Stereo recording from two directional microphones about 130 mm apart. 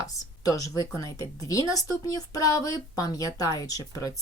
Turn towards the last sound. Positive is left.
turn(degrees=30)  # may be behind; listen again after turning